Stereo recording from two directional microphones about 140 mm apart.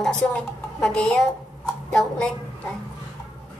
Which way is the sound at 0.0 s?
10° left (ahead or behind).